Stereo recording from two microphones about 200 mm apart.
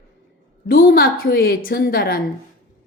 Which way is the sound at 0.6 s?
45° left (ahead or behind).